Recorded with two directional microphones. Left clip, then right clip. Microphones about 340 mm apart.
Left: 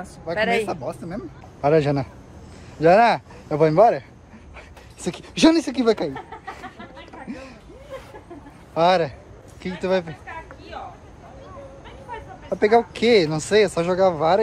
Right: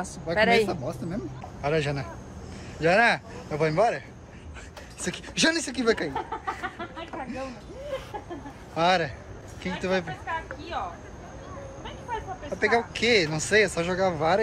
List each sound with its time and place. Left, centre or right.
0.0 s a man's voice: centre
1.6 s speech: centre
5.0 s speech: centre
7.2 s a sound: centre
8.7 s speech: centre
12.5 s speech: centre